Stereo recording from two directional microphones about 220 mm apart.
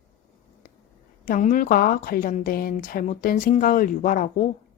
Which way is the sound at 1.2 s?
40° left (ahead or behind).